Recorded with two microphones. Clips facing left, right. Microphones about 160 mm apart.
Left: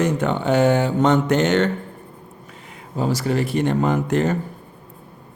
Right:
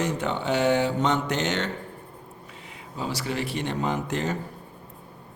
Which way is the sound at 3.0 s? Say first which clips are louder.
Left 8 dB; 45° left (ahead or behind).